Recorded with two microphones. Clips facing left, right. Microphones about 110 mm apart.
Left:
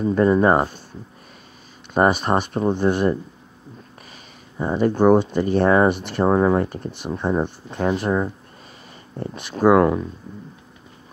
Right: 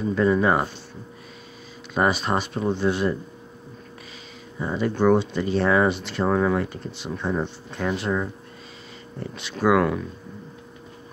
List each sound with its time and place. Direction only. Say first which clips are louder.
0.1 s speech: left 4 dB; 45° left (ahead or behind)
2.0 s speech: left 4 dB; 50° left (ahead or behind)
4.6 s speech: left 5 dB; 45° left (ahead or behind)
6.2 s speech: left 4 dB; 30° left (ahead or behind)
6.8 s speech: left 4 dB; 50° left (ahead or behind)
9.3 s speech: left 5 dB; 45° left (ahead or behind)